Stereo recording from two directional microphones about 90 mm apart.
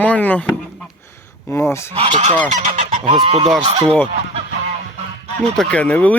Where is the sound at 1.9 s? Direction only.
90° right.